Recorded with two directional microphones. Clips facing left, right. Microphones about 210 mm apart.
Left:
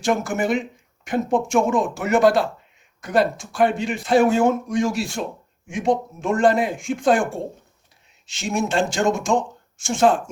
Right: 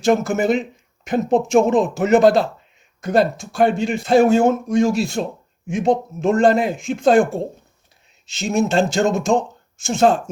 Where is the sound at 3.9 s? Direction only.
25° right (ahead or behind).